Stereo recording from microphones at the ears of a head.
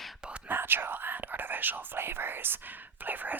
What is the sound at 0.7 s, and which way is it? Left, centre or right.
Speech, right.